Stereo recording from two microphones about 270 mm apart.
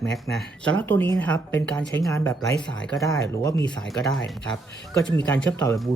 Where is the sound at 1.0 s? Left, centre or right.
Centre.